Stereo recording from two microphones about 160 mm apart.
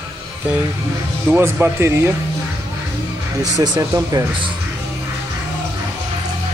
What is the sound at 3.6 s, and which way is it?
Speech, 25° right (ahead or behind).